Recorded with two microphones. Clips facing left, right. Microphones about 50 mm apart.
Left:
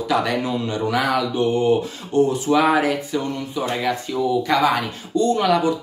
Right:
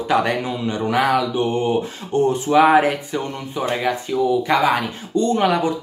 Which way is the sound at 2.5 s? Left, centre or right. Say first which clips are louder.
Right 5 dB; right.